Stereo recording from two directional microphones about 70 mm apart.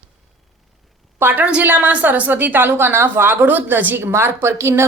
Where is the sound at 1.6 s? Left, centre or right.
Right.